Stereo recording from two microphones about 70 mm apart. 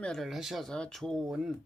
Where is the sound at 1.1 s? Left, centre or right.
Centre.